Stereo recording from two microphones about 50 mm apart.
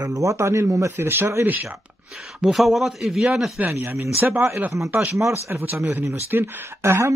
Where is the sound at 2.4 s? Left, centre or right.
Centre.